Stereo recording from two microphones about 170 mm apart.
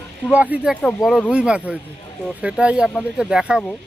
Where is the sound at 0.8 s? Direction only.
5° left (ahead or behind).